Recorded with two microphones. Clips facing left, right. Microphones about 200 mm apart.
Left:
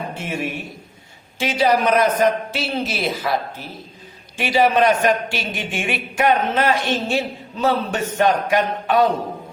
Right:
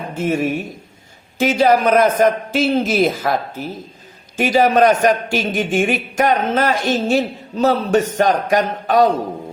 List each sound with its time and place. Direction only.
0.2 s a man's voice: 45° right (ahead or behind)